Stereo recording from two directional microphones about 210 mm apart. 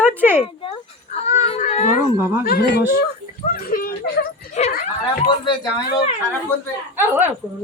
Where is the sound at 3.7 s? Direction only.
45° left (ahead or behind).